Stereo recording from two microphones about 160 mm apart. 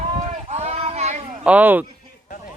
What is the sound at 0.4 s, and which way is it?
Child singing, 45° right (ahead or behind).